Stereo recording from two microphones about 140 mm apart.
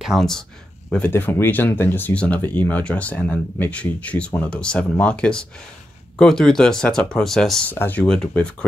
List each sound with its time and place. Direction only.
0.0 s speech: centre (ahead or behind)
0.9 s speech: 10° left (ahead or behind)